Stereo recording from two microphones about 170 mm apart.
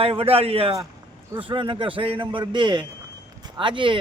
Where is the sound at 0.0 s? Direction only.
35° right (ahead or behind).